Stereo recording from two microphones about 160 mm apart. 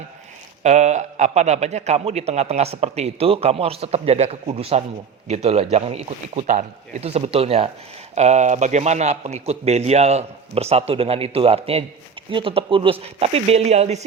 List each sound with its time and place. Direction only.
0.6 s a man's voice: 45° right (ahead or behind)